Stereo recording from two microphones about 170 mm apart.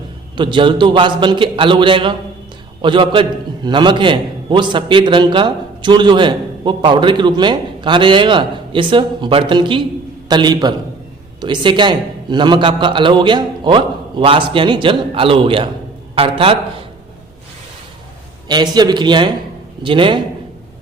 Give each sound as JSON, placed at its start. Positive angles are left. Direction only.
{"t": 0.3, "sound": "a man's voice", "side_deg": -30}
{"t": 18.4, "sound": "a man's voice", "side_deg": -25}